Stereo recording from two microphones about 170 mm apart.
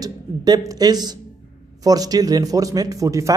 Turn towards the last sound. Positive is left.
turn(degrees=-20)  # may be behind; listen again after turning